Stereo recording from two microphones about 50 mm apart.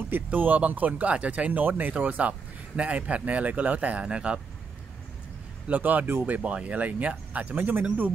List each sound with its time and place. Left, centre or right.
0.1 s speech: right
5.7 s speech: right
7.5 s speech: right